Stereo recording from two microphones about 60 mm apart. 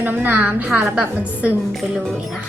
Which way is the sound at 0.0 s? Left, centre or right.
Right.